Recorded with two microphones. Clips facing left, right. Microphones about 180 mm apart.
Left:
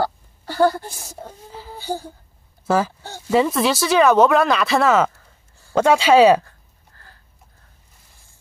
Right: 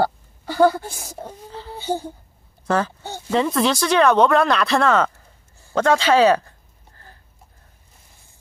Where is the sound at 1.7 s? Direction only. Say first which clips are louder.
Right 3 dB; 20° right (ahead or behind).